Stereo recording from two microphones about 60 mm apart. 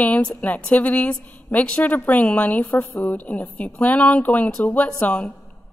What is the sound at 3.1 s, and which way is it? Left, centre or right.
A woman's voice, left.